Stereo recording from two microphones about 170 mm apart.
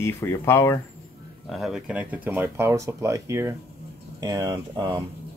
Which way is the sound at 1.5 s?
Centre (ahead or behind).